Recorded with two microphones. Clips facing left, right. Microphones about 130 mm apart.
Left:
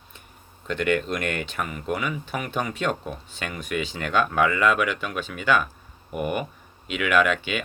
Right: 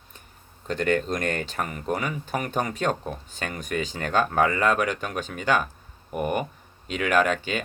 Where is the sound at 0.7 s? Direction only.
40° right (ahead or behind).